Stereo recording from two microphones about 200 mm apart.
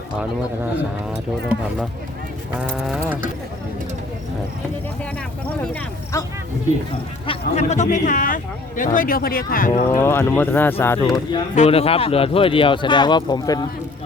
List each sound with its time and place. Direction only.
2.6 s a sound: 5° right (ahead or behind)
6.1 s speech: 15° left (ahead or behind)
7.3 s speech: 35° left (ahead or behind)
9.9 s speech: 10° left (ahead or behind)
11.5 s speech: 30° left (ahead or behind)